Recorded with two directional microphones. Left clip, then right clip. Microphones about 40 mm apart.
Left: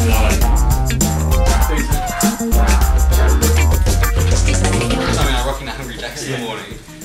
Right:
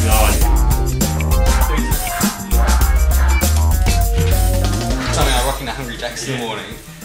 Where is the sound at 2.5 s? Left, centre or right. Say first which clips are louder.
Left 1 dB; centre.